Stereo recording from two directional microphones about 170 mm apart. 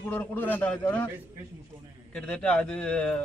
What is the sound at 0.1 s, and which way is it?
Speech, 10° left (ahead or behind).